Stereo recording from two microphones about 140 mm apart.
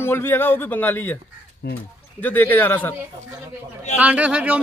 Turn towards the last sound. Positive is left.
turn(degrees=-10)  # may be behind; listen again after turning